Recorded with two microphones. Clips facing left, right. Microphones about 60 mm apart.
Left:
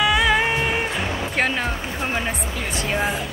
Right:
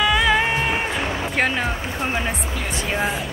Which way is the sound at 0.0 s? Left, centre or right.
Centre.